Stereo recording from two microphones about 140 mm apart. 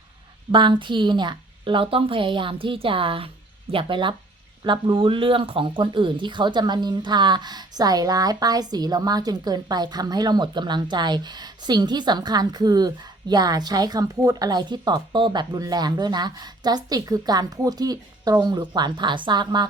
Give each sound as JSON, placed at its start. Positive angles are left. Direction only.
{"t": 0.5, "sound": "a woman's voice", "side_deg": -35}